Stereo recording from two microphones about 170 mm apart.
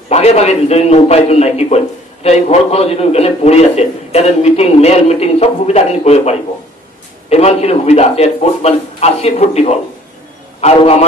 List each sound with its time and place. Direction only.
0.1 s a man's voice: 40° left (ahead or behind)